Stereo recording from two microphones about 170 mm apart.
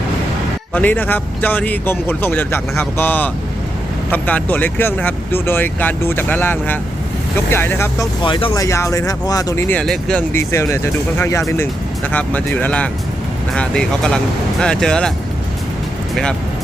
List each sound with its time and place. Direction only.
0.7 s a man's voice: 10° left (ahead or behind)
8.2 s speech: 30° left (ahead or behind); by 10.2 s 5° left (ahead or behind)
10.3 s a man's voice: 15° left (ahead or behind)